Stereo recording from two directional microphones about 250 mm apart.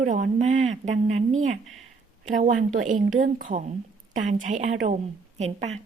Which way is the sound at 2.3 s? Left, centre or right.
Right.